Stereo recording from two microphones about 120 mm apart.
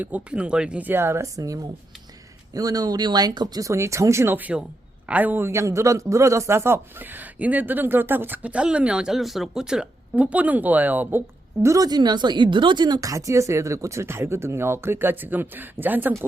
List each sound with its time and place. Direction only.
0.0 s a man's voice: 10° right (ahead or behind)
11.6 s speech: 30° right (ahead or behind)